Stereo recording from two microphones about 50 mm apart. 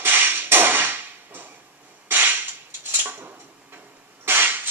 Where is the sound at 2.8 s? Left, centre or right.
Right.